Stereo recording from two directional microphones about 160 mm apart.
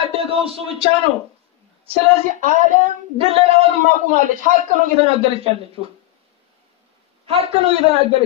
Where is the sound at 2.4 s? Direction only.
55° right (ahead or behind).